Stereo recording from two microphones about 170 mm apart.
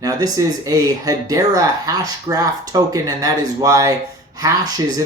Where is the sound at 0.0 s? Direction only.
20° right (ahead or behind).